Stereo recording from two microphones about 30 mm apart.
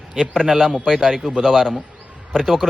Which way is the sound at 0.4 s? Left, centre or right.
Centre.